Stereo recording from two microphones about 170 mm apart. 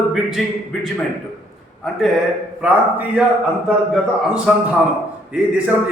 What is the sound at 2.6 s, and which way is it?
Speech, 5° right (ahead or behind).